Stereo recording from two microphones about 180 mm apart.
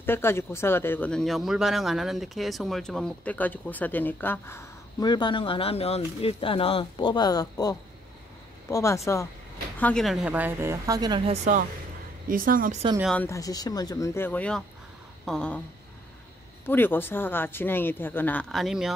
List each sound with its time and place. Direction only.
0.0 s speech: 10° left (ahead or behind)
9.8 s speech: 5° left (ahead or behind); by 11.3 s 25° right (ahead or behind)
12.3 s speech: 50° right (ahead or behind)
13.0 s a sound: 5° left (ahead or behind)
13.3 s speech: 20° left (ahead or behind)
15.2 s a sound: 5° left (ahead or behind)
16.6 s speech: 10° left (ahead or behind)